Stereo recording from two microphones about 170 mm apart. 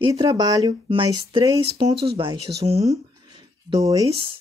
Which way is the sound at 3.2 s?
20° right (ahead or behind).